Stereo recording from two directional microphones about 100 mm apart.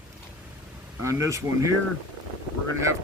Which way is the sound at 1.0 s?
30° right (ahead or behind).